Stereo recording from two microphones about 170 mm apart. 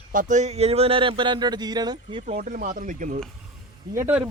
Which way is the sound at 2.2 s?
50° right (ahead or behind).